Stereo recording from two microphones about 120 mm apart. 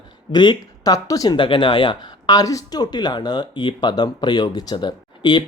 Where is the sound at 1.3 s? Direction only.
45° left (ahead or behind).